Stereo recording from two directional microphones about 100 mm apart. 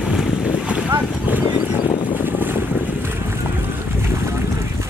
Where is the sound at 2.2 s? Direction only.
20° right (ahead or behind).